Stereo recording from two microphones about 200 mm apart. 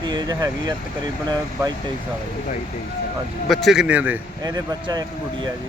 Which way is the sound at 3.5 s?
Centre (ahead or behind).